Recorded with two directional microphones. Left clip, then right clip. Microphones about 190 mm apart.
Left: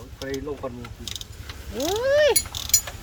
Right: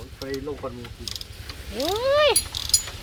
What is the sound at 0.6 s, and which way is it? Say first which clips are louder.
Speech: even; 5° left (ahead or behind).